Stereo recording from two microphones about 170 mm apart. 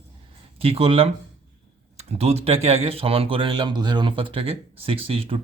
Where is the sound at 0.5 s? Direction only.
35° right (ahead or behind).